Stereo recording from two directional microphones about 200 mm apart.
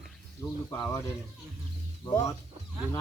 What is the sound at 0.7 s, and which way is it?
Speech, 15° left (ahead or behind).